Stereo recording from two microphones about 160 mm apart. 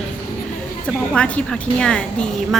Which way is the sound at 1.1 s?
5° left (ahead or behind).